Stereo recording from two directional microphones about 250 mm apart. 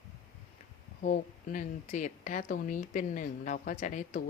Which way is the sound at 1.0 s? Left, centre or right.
Left.